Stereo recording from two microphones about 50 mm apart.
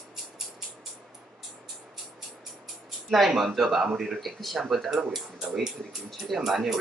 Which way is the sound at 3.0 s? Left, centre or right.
Centre.